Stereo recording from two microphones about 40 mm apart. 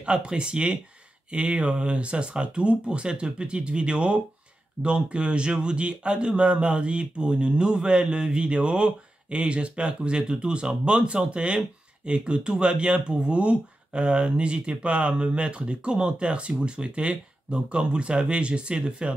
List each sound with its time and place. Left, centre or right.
0.0 s speech: right